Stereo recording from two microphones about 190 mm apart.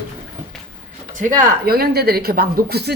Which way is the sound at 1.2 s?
45° right (ahead or behind).